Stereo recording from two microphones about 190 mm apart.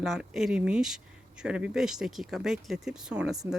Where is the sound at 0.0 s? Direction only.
Centre (ahead or behind).